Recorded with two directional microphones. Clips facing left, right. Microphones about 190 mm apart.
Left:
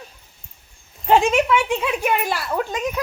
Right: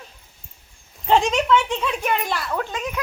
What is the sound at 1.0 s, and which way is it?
Speech, 5° left (ahead or behind).